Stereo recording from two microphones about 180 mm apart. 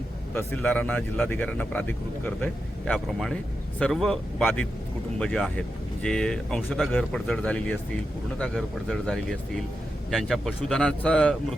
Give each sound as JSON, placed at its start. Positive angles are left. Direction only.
{"t": 0.3, "sound": "speech", "side_deg": 10}